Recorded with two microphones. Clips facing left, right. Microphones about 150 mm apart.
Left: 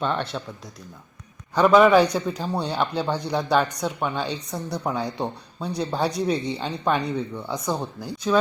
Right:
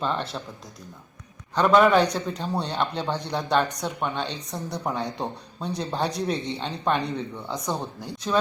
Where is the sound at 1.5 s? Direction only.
5° left (ahead or behind).